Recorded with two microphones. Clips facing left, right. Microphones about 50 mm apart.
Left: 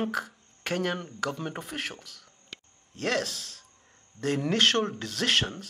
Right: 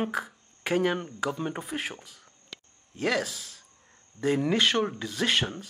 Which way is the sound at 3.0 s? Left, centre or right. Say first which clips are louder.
Right 1 dB; centre.